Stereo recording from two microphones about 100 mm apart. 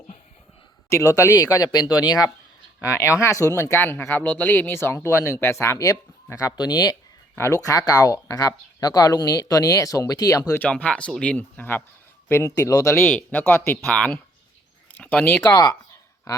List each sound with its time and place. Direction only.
1.1 s speech: 30° left (ahead or behind)
2.9 s speech: 30° left (ahead or behind)
7.3 s speech: 30° left (ahead or behind)
10.6 s speech: 15° left (ahead or behind)
12.3 s speech: 30° left (ahead or behind)
13.1 s speech: 15° left (ahead or behind)
13.8 s speech: 10° left (ahead or behind)